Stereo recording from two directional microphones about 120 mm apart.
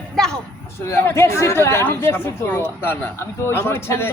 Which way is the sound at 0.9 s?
20° left (ahead or behind).